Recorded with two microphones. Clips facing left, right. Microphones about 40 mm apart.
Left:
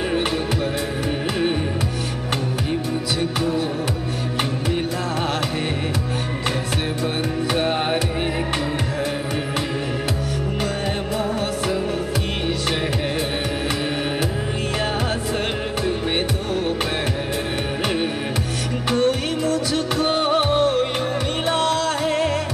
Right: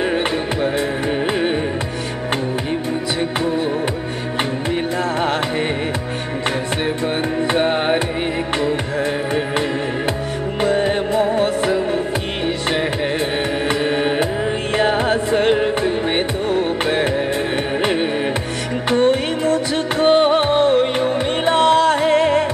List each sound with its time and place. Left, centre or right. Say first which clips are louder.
3.2 s music: right 2 dB; right
7.5 s music: right 4 dB; centre
10.6 s music: right 11 dB; right
14.8 s music: right 9 dB; right
18.9 s music: right 4 dB; right